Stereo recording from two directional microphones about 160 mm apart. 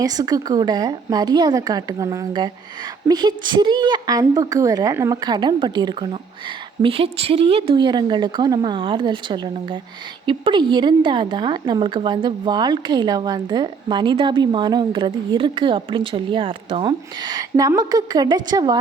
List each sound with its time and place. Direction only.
0.0 s a woman's voice: 25° right (ahead or behind)